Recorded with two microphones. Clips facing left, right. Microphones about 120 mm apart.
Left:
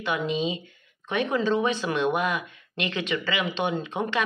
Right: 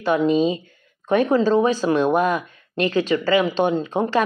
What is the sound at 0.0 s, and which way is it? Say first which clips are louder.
Speech: right 9 dB; 35° right (ahead or behind).